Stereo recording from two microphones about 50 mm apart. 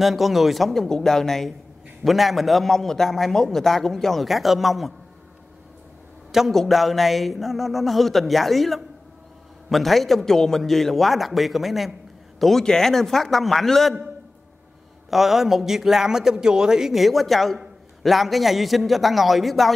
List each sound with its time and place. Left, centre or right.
0.0 s a man's voice: centre
0.8 s a man's voice: centre
6.5 s a man's voice: centre
15.0 s a man's voice: centre